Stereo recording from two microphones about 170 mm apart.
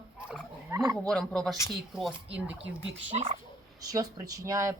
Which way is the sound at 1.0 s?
Centre (ahead or behind).